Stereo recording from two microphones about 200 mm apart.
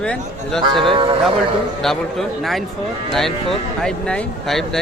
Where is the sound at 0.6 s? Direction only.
25° right (ahead or behind).